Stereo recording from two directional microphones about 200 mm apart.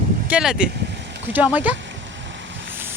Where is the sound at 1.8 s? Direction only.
65° right (ahead or behind).